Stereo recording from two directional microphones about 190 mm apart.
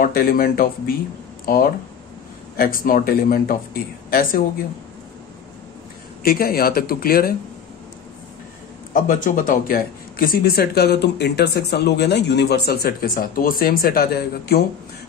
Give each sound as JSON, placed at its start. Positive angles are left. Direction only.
{"t": 0.0, "sound": "a woman's voice", "side_deg": 50}
{"t": 6.2, "sound": "speech", "side_deg": 50}
{"t": 8.9, "sound": "speech", "side_deg": 45}